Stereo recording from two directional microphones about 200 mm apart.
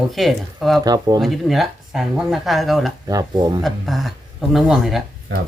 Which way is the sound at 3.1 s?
20° right (ahead or behind).